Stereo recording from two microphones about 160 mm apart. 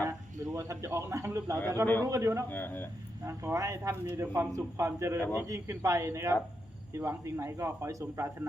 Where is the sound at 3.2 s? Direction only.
15° right (ahead or behind).